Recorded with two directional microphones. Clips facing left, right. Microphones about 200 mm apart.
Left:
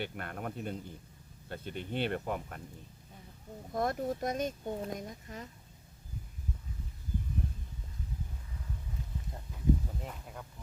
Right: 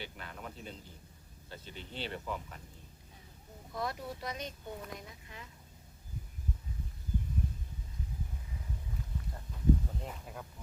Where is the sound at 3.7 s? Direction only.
50° left (ahead or behind).